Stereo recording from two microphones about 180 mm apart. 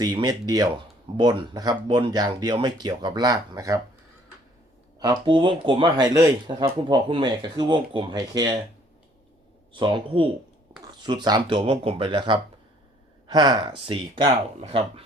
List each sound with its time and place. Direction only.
0.0 s speech: 20° right (ahead or behind)
4.9 s speech: 25° right (ahead or behind)
9.7 s speech: 25° right (ahead or behind)